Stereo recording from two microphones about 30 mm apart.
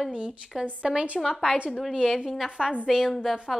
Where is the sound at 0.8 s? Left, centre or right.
Right.